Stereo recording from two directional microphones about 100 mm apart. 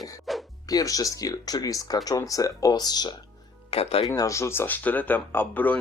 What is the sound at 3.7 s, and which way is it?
Speech, 80° left.